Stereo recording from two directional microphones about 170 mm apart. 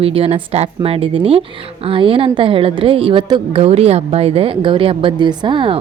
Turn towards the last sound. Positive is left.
turn(degrees=-30)  # may be behind; listen again after turning